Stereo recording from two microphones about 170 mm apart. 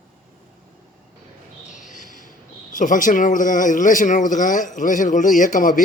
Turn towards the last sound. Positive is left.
turn(degrees=50)  # may be behind; listen again after turning